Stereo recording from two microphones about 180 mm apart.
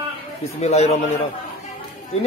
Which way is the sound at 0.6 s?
35° left (ahead or behind).